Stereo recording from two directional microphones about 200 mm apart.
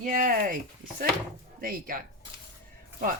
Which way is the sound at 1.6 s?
45° right (ahead or behind).